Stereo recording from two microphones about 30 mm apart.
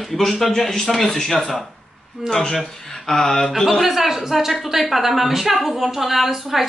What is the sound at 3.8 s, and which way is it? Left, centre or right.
A woman's voice, centre.